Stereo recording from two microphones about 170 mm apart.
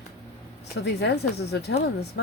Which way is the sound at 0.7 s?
85° left.